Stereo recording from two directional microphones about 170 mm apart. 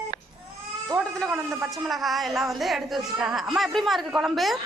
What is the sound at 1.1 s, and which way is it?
Speech, centre (ahead or behind).